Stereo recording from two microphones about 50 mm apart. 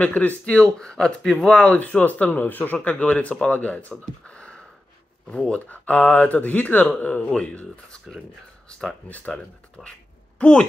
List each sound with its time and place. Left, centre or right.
0.0 s speech: left
0.7 s speech: centre
1.8 s speech: left
4.3 s a sound: left
5.5 s speech: left
8.6 s a sound: centre
9.1 s speech: left
9.8 s speech: centre